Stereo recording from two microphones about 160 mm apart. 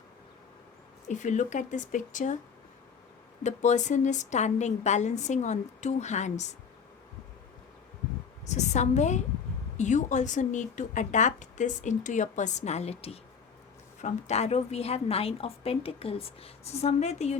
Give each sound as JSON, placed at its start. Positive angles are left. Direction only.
{"t": 1.0, "sound": "speech", "side_deg": 50}
{"t": 3.4, "sound": "speech", "side_deg": 45}
{"t": 8.4, "sound": "a woman's voice", "side_deg": 45}